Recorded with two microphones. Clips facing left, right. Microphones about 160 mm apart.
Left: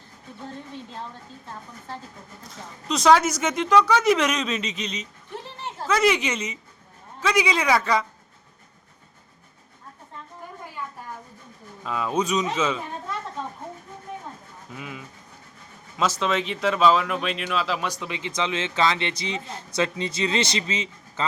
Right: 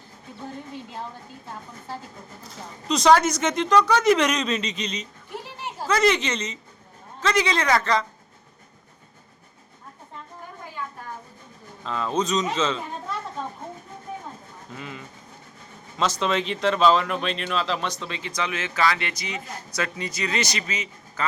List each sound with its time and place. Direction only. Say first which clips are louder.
0.4 s a woman's voice: right 1 dB; 10° right (ahead or behind)
2.4 s speech: right 1 dB; centre (ahead or behind)
5.3 s a sound: even; 10° right (ahead or behind)
5.9 s a man's voice: even; 10° left (ahead or behind)
11.8 s a man's voice: even; 10° left (ahead or behind)
14.7 s a man's voice: even; 5° left (ahead or behind); by 21.2 s 25° left (ahead or behind)